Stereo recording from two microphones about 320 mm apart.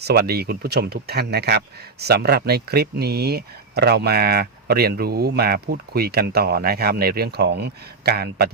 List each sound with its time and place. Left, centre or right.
0.0 s speech: right